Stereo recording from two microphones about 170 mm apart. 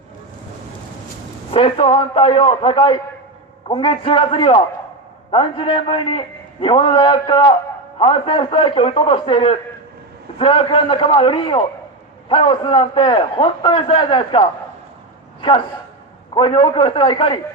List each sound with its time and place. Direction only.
1.5 s a man's voice: 30° left (ahead or behind)